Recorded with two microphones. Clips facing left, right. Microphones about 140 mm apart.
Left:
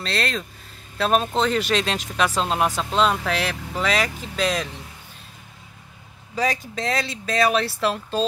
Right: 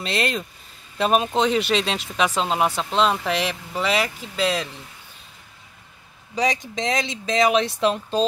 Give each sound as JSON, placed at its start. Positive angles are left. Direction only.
{"t": 0.0, "sound": "speech", "side_deg": 0}
{"t": 3.3, "sound": "speech", "side_deg": -10}
{"t": 6.3, "sound": "speech", "side_deg": -20}
{"t": 7.9, "sound": "speech", "side_deg": 5}